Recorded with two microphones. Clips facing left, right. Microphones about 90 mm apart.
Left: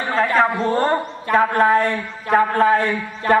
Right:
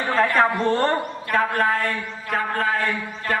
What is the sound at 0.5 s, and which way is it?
A man's voice, 5° left (ahead or behind).